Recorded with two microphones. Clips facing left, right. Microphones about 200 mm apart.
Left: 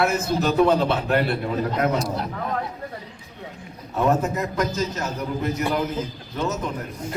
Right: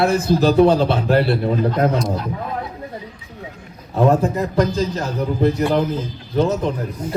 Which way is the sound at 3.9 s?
35° right (ahead or behind).